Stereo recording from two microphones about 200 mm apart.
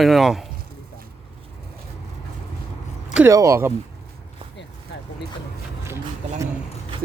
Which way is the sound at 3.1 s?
15° right (ahead or behind).